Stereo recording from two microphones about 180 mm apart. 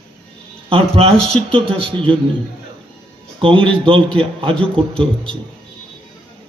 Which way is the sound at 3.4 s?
30° right (ahead or behind).